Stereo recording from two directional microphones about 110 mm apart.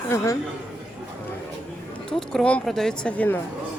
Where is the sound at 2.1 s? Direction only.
5° left (ahead or behind).